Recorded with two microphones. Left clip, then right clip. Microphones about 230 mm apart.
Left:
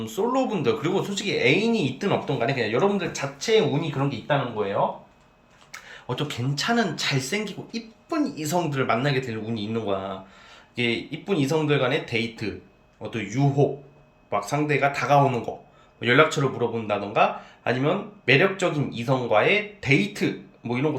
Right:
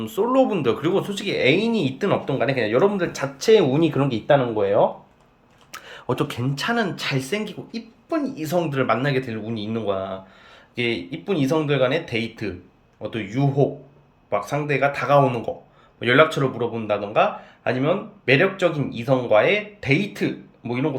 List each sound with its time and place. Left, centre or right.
0.0 s speech: centre